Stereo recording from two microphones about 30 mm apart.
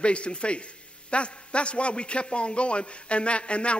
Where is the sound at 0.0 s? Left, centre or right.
Left.